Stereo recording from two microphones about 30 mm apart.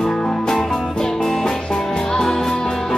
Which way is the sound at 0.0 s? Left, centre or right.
Centre.